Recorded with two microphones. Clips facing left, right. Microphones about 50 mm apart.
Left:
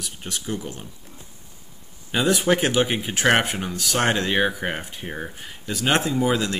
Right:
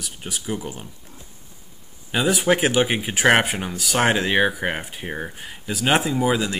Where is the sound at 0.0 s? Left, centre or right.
Centre.